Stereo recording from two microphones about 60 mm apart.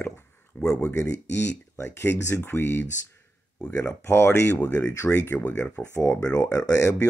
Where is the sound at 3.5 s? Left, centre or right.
Centre.